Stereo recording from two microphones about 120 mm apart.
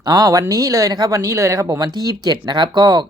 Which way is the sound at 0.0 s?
35° right (ahead or behind).